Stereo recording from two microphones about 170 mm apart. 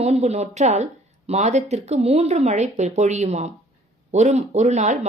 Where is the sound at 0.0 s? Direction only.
40° right (ahead or behind).